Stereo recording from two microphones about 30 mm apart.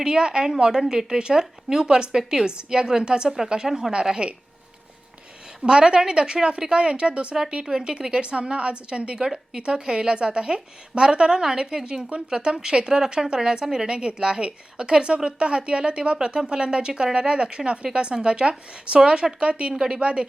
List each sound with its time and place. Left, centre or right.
0.0 s a woman's voice: right
3.7 s a woman's voice: centre
4.0 s a woman's voice: right
5.6 s a woman's voice: right
7.7 s a woman's voice: right
13.8 s a woman's voice: right
19.7 s a woman's voice: right
20.0 s a woman's voice: right